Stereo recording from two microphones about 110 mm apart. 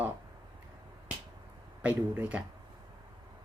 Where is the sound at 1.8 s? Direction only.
15° right (ahead or behind).